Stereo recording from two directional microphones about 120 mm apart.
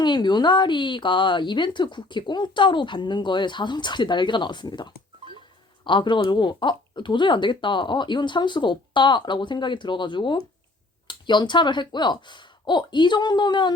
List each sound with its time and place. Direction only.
0.0 s speech: 35° left (ahead or behind)